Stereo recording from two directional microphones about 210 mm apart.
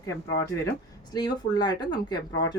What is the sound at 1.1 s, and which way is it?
Speech, 20° left (ahead or behind).